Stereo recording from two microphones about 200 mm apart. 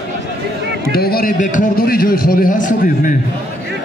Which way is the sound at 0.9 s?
50° left (ahead or behind).